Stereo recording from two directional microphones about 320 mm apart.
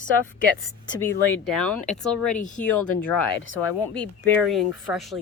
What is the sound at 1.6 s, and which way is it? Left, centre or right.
Speech, left.